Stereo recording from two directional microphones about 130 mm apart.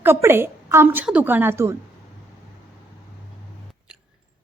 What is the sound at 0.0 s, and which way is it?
A woman's voice, 15° right (ahead or behind).